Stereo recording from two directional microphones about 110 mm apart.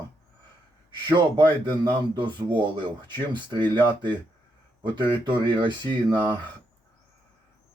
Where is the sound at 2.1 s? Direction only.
45° right (ahead or behind).